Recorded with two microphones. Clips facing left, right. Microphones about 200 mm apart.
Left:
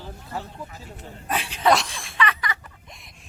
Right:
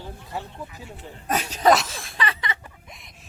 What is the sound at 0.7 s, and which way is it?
Speech, 40° left (ahead or behind).